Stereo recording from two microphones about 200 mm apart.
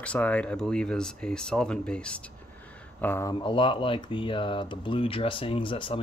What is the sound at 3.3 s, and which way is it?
Speech, 25° left (ahead or behind).